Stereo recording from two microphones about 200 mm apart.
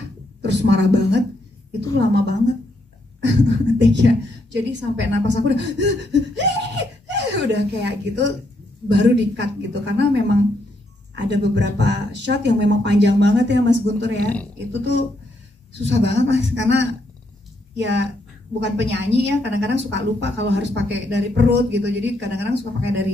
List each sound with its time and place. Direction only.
0.4 s a woman's voice: 60° right (ahead or behind)